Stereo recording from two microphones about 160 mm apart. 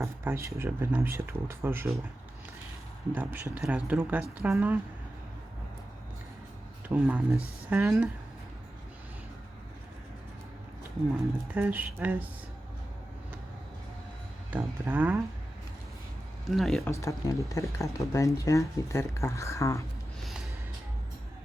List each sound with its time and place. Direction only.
0.0 s speech: 15° right (ahead or behind)
3.2 s speech: 10° right (ahead or behind)
6.8 s speech: 10° right (ahead or behind)
11.5 s speech: 10° right (ahead or behind)
14.5 s speech: 10° right (ahead or behind)
16.5 s speech: centre (ahead or behind)
16.8 s speech: 20° left (ahead or behind)
20.2 s music: centre (ahead or behind)